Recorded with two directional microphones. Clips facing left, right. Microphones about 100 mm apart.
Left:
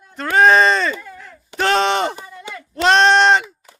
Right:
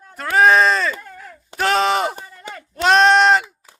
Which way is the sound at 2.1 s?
40° right (ahead or behind).